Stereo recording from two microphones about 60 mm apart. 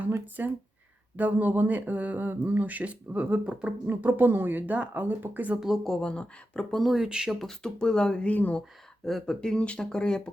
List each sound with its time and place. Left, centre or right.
0.4 s speech: right
3.8 s speech: right
5.5 s speech: centre
5.8 s speech: centre
6.7 s speech: centre
6.9 s speech: centre
7.3 s speech: centre
8.3 s speech: left
9.0 s speech: centre